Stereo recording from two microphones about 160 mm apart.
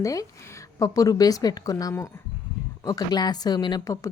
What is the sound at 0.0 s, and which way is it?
Speech, 20° left (ahead or behind).